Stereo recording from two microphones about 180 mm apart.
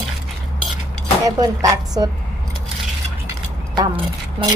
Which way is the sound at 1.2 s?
20° right (ahead or behind).